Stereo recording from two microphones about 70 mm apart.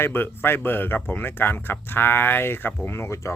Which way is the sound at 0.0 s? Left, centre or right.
Left.